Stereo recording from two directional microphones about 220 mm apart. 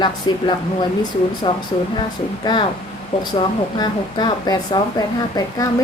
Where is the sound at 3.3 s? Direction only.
20° left (ahead or behind).